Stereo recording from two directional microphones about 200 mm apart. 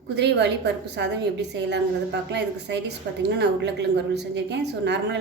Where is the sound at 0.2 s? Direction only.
60° right (ahead or behind).